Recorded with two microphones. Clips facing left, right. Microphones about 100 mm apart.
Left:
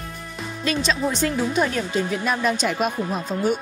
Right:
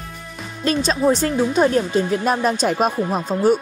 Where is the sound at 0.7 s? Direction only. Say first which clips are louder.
Right 6 dB; 40° right (ahead or behind).